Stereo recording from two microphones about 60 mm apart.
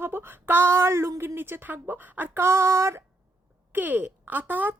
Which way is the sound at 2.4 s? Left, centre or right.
Right.